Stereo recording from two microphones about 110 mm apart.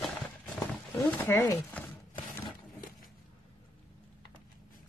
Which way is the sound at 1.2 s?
25° left (ahead or behind).